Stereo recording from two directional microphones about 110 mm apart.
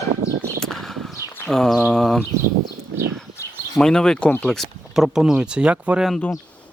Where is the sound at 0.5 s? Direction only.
5° left (ahead or behind).